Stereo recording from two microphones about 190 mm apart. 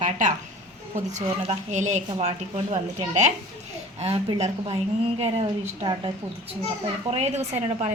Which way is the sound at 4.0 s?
30° right (ahead or behind).